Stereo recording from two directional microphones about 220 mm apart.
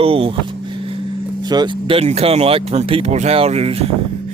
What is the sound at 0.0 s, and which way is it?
Speech, 25° right (ahead or behind).